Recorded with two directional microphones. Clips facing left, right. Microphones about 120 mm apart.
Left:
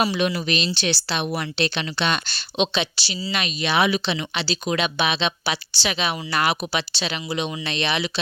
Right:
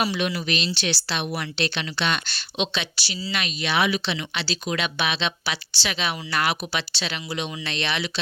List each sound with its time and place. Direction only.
0.0 s speech: 30° left (ahead or behind)
1.5 s speech: 20° left (ahead or behind)